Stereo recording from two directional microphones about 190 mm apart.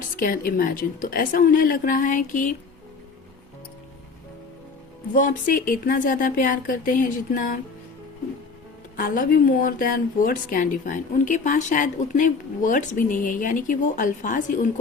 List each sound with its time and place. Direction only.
0.2 s a woman's voice: 50° left (ahead or behind)
5.1 s a woman's voice: 45° left (ahead or behind)
9.0 s a woman's voice: 45° left (ahead or behind)